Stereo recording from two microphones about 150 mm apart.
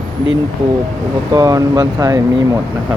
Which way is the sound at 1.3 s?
25° right (ahead or behind).